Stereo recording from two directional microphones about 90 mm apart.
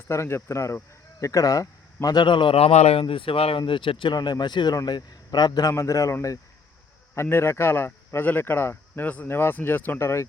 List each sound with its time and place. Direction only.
0.1 s speech: 30° left (ahead or behind)
2.2 s a man's voice: 65° left (ahead or behind); by 3.6 s 90° left
3.7 s speech: 70° left (ahead or behind)
4.1 s a man's voice: 55° left (ahead or behind)
5.7 s speech: 35° left (ahead or behind)